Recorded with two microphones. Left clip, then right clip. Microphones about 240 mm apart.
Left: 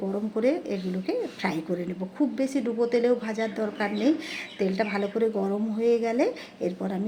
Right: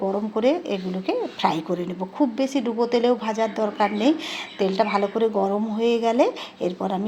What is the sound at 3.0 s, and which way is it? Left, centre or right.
A woman's voice, right.